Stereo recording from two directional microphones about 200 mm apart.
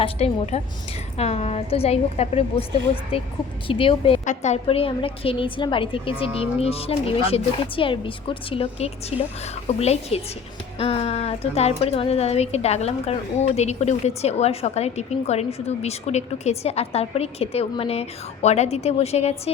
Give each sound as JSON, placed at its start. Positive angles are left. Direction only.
{"t": 0.0, "sound": "a woman's voice", "side_deg": 35}
{"t": 3.7, "sound": "a woman's voice", "side_deg": 25}